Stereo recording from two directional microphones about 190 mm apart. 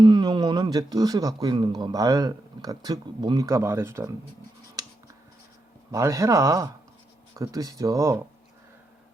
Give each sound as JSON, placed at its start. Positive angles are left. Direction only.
{"t": 0.0, "sound": "speech", "side_deg": -20}
{"t": 4.8, "sound": "a sound", "side_deg": -20}
{"t": 5.9, "sound": "speech", "side_deg": -15}